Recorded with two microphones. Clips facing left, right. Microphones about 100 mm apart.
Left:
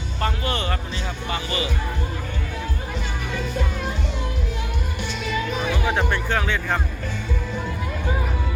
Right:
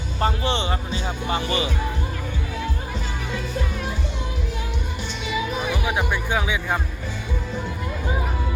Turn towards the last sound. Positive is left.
turn(degrees=-10)  # may be behind; listen again after turning